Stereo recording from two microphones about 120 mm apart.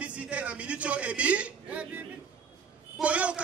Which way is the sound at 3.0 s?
10° right (ahead or behind).